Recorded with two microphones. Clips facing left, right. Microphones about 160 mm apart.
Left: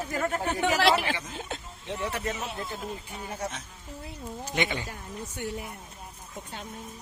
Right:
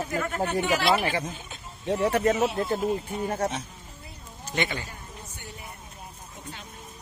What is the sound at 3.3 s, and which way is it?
Speech, 60° right (ahead or behind).